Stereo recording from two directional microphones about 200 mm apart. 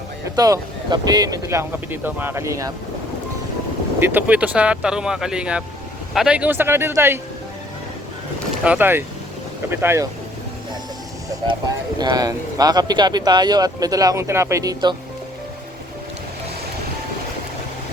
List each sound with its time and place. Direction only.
0.3 s speech: 20° right (ahead or behind)
4.0 s speech: 10° right (ahead or behind)
8.6 s speech: 10° right (ahead or behind)
11.9 s speech: 20° right (ahead or behind)